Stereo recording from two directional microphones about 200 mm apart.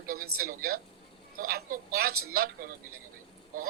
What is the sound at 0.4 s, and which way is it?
A man's voice, 50° right (ahead or behind).